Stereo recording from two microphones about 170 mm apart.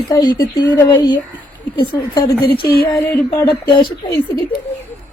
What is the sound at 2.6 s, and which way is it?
Music, 65° left (ahead or behind).